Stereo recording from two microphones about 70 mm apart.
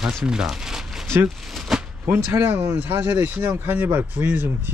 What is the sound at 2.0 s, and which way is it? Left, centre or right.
Speech, right.